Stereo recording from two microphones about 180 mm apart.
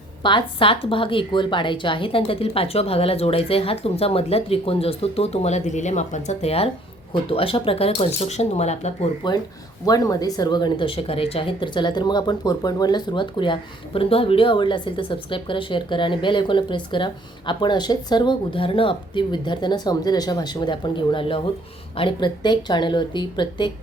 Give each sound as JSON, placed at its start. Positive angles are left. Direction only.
{"t": 0.2, "sound": "a woman's voice", "side_deg": 25}
{"t": 9.8, "sound": "speech", "side_deg": 20}